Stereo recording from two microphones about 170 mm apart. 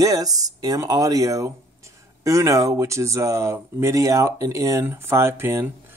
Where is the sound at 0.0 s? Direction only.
20° right (ahead or behind).